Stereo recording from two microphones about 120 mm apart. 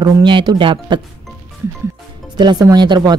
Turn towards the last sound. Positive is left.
turn(degrees=-35)  # may be behind; listen again after turning